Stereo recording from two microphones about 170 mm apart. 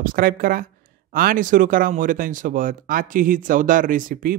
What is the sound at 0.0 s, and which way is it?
Speech, 55° right (ahead or behind).